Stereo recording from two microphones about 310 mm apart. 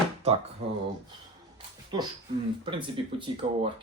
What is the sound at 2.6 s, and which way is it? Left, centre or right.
Speech, centre.